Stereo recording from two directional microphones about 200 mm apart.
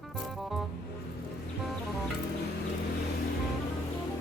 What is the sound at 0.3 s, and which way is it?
Music, centre (ahead or behind).